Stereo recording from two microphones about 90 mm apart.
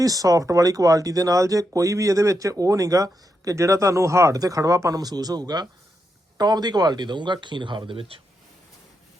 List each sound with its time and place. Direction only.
0.0 s speech: 40° right (ahead or behind); by 8.2 s 90° right